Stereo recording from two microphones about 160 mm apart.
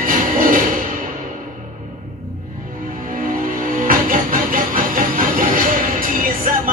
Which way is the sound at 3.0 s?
55° right (ahead or behind).